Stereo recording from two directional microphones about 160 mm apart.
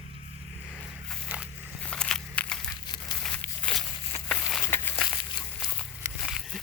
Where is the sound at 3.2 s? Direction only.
10° left (ahead or behind).